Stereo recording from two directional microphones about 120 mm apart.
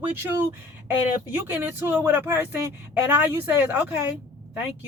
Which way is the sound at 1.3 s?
20° right (ahead or behind).